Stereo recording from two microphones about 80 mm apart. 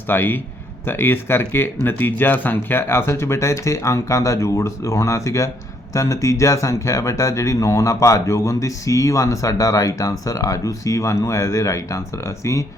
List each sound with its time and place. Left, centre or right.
0.1 s speech: left